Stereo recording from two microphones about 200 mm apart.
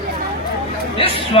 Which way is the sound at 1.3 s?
30° left (ahead or behind).